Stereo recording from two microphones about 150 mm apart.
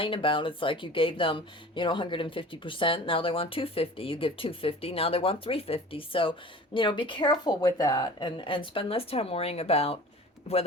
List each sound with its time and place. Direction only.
0.0 s speech: 35° left (ahead or behind)